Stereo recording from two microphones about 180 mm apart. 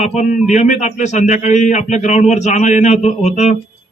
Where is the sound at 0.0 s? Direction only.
40° left (ahead or behind).